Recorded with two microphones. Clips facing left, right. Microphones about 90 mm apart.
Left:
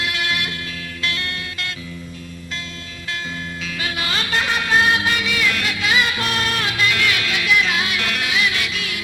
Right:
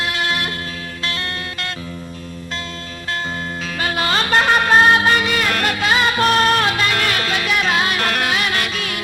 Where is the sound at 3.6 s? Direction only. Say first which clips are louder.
Right 6 dB; 45° right (ahead or behind).